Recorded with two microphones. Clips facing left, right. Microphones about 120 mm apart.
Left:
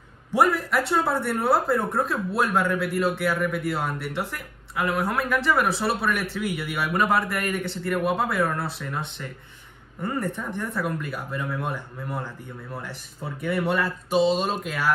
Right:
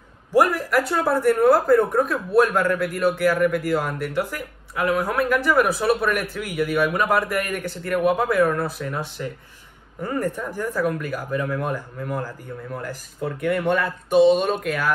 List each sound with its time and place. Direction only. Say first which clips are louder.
0.4 s speech: right 3 dB; 10° right (ahead or behind)
10.0 s speech: right 3 dB; centre (ahead or behind)
14.1 s speech: right 6 dB; 55° right (ahead or behind)